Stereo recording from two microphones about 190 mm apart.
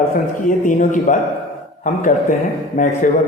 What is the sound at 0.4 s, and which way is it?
Speech, 45° left (ahead or behind).